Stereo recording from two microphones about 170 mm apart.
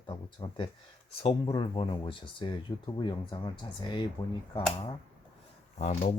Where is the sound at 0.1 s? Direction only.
30° left (ahead or behind).